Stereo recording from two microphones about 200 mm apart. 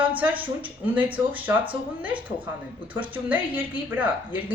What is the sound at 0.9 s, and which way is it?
Speech, 10° right (ahead or behind).